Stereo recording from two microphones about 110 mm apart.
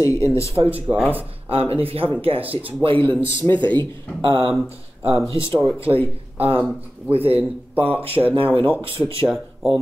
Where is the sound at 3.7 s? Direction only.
45° right (ahead or behind).